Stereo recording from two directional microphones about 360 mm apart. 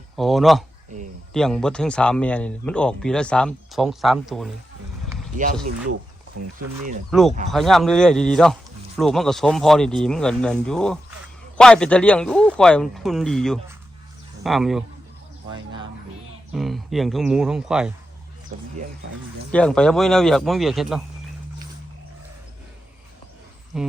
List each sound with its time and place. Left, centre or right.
0.2 s speech: centre
5.1 s a sound: centre
5.9 s speech: right
7.1 s speech: centre
15.5 s speech: centre
16.5 s speech: centre
19.5 s speech: centre
23.7 s speech: centre